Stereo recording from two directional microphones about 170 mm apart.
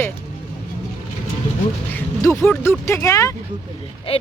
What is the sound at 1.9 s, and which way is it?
Speech, 15° left (ahead or behind).